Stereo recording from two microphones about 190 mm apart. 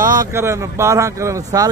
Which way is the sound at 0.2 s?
15° right (ahead or behind).